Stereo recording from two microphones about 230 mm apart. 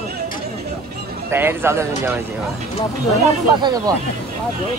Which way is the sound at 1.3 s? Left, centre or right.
Centre.